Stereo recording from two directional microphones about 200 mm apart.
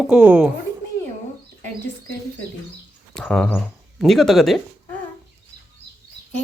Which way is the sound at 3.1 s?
5° left (ahead or behind).